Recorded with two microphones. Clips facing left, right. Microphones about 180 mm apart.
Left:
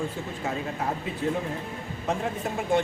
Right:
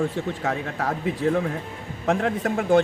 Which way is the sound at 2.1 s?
80° right.